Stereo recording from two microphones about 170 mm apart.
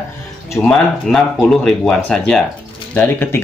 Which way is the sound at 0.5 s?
5° left (ahead or behind).